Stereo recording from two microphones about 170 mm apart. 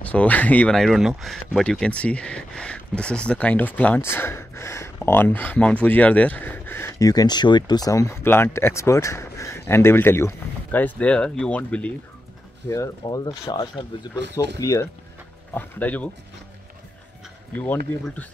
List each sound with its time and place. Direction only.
0.0 s speech: 10° left (ahead or behind)
12.6 s speech: 20° left (ahead or behind)
15.5 s speech: 10° left (ahead or behind)
17.6 s speech: 10° left (ahead or behind)